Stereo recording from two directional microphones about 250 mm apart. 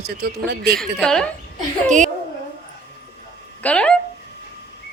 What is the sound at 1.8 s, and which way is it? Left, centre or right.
Speech, right.